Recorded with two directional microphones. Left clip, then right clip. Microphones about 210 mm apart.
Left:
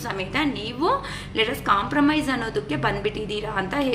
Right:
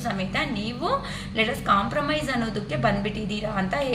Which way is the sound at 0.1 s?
50° left (ahead or behind).